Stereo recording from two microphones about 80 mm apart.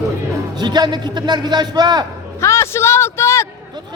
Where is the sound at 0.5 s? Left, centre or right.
Right.